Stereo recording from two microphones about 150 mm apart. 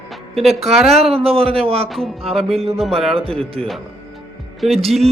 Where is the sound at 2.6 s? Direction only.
40° right (ahead or behind).